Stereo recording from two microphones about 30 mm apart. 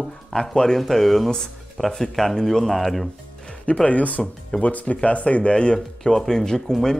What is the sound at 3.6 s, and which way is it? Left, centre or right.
Speech, left.